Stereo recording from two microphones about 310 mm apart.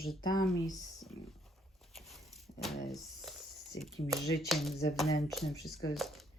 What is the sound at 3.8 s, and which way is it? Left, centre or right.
Speech, centre.